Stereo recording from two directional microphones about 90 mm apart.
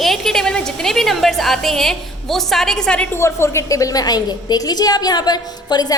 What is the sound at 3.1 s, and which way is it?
A woman's voice, 30° left (ahead or behind).